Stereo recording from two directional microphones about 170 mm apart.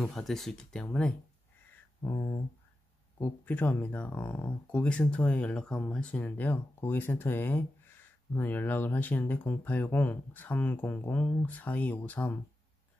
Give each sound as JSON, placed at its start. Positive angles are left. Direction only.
{"t": 0.0, "sound": "speech", "side_deg": 5}
{"t": 2.0, "sound": "speech", "side_deg": 20}